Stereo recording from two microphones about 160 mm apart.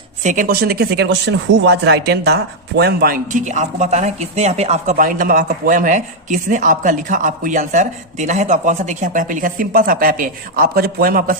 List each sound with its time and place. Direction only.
0.2 s speech: 50° right (ahead or behind)
0.4 s speech: 75° right (ahead or behind)